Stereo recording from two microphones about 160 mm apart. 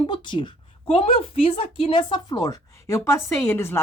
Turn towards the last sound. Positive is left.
turn(degrees=15)  # may be behind; listen again after turning